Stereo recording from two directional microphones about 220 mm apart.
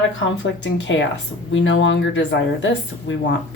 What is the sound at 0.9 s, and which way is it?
A woman's voice, 55° left (ahead or behind).